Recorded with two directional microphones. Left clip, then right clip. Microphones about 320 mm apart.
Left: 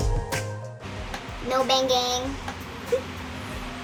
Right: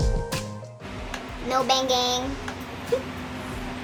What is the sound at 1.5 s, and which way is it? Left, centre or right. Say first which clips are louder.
Speech: even; centre.